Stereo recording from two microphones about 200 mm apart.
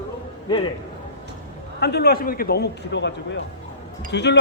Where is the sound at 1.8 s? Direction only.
55° left (ahead or behind).